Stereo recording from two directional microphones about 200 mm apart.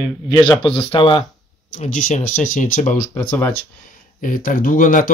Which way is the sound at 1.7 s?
40° left (ahead or behind).